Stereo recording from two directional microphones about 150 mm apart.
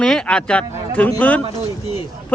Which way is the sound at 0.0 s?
5° left (ahead or behind).